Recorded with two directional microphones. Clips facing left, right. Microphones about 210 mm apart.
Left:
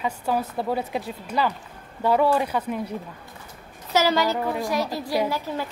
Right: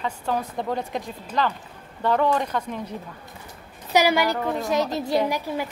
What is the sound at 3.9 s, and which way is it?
A woman's voice, 15° right (ahead or behind).